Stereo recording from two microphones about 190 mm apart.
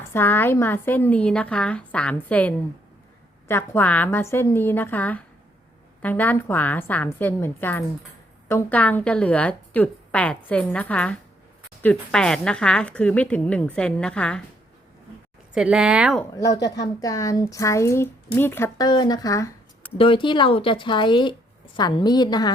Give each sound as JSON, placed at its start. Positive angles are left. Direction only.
{"t": 0.0, "sound": "a woman's voice", "side_deg": 10}
{"t": 15.5, "sound": "a woman's voice", "side_deg": -5}
{"t": 16.3, "sound": "a woman's voice", "side_deg": 20}
{"t": 20.0, "sound": "speech", "side_deg": 25}